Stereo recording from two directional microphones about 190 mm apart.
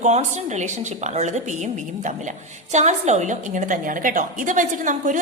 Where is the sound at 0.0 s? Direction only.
40° right (ahead or behind).